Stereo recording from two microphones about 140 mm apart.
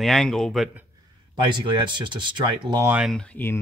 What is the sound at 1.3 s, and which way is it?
Speech, 35° right (ahead or behind).